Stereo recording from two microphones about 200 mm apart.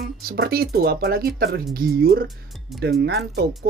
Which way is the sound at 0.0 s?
50° right (ahead or behind).